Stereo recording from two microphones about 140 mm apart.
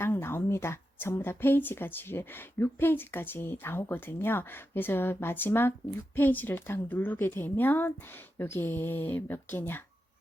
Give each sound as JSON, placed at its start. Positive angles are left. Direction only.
{"t": 0.0, "sound": "a woman's voice", "side_deg": 15}